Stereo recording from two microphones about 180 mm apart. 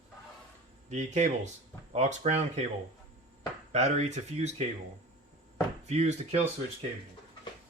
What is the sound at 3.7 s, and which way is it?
Speech, 40° right (ahead or behind).